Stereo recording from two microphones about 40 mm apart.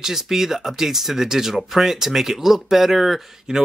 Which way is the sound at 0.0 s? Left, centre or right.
Centre.